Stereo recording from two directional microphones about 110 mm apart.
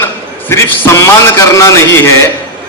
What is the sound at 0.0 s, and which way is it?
A man's voice, 20° left (ahead or behind).